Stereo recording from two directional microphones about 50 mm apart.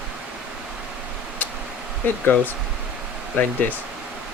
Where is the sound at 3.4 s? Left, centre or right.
Left.